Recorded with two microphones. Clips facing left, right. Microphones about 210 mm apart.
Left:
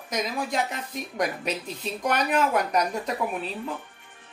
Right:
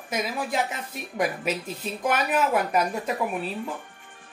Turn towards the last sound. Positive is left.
turn(degrees=-5)  # may be behind; listen again after turning